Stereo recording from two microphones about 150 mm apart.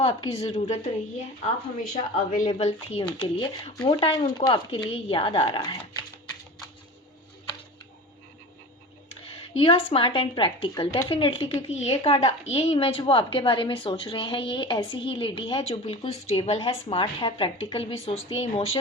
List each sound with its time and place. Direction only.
0.0 s a woman's voice: 40° left (ahead or behind)
1.9 s a woman's voice: 55° left (ahead or behind)
2.5 s speech: 45° left (ahead or behind)
3.2 s a woman's voice: 35° left (ahead or behind)
9.6 s a woman's voice: 40° left (ahead or behind)